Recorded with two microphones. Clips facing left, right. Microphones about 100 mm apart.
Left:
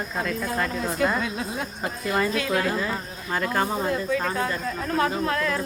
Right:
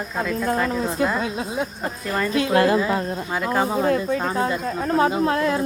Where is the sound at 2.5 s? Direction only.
90° right.